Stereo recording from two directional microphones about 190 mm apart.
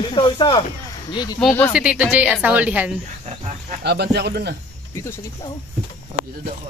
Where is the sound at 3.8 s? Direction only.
60° right (ahead or behind).